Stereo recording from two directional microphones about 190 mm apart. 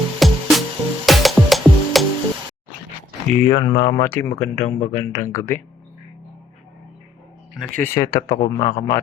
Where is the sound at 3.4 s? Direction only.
20° left (ahead or behind).